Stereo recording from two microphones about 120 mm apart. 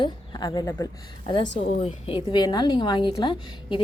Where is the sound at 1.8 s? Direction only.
55° left (ahead or behind).